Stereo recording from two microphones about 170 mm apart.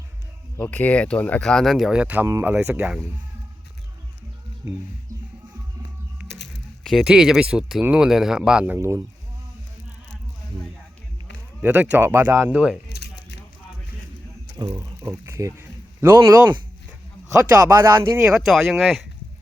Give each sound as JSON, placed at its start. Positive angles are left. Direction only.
{"t": 0.5, "sound": "speech", "side_deg": 10}
{"t": 6.8, "sound": "speech", "side_deg": 0}
{"t": 11.6, "sound": "speech", "side_deg": -10}
{"t": 14.8, "sound": "speech", "side_deg": -15}